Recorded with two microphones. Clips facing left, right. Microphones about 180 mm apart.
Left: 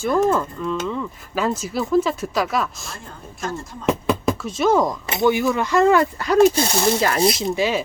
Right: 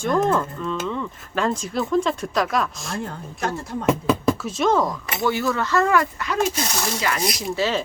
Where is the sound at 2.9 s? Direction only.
70° right (ahead or behind).